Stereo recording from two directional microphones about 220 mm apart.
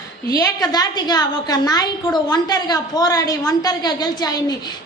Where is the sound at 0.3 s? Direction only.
15° left (ahead or behind).